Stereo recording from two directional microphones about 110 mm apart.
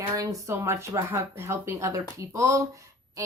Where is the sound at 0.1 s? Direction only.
30° right (ahead or behind).